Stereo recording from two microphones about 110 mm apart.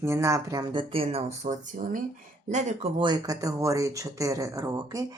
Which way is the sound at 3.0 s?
35° right (ahead or behind).